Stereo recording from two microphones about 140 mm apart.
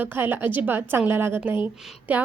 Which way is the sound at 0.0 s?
15° right (ahead or behind).